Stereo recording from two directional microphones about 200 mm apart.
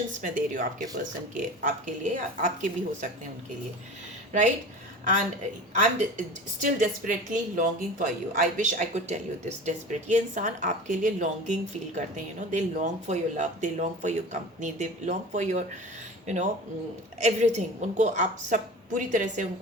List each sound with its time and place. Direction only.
0.2 s a woman's voice: 40° right (ahead or behind)
4.3 s speech: 35° right (ahead or behind)
5.8 s a woman's voice: 40° right (ahead or behind)